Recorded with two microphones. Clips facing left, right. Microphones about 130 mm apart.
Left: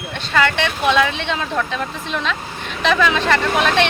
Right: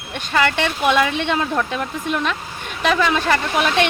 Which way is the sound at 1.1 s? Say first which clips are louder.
Right 2 dB; 55° right (ahead or behind).